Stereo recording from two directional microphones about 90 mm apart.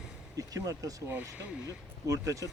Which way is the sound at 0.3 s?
40° right (ahead or behind).